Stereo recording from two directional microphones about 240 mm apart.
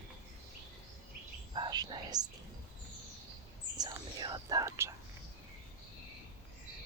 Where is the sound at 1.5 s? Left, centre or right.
Centre.